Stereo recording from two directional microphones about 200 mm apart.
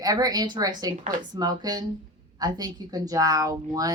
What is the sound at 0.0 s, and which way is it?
A woman's voice, 20° right (ahead or behind).